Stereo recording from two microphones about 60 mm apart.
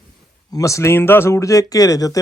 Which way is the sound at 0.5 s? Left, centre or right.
Left.